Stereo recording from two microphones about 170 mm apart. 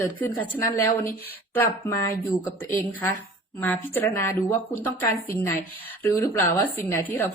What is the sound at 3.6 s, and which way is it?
Speech, 10° left (ahead or behind).